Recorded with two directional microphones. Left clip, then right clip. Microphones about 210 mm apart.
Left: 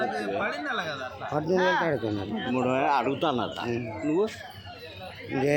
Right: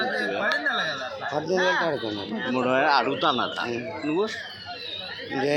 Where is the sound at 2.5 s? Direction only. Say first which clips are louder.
Right 4 dB; 10° left (ahead or behind).